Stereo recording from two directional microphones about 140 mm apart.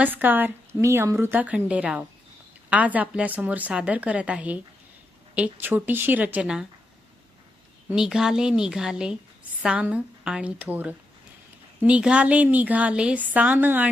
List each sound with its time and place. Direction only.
0.0 s a woman's voice: 10° right (ahead or behind)
7.9 s a woman's voice: 5° right (ahead or behind)